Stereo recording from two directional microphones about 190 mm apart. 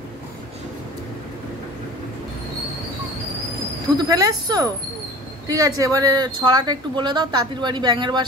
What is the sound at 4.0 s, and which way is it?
Speech, 20° right (ahead or behind).